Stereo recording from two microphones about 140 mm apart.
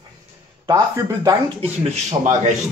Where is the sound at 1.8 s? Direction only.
55° right (ahead or behind).